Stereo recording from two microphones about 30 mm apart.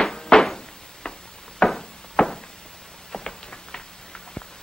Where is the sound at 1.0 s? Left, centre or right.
Left.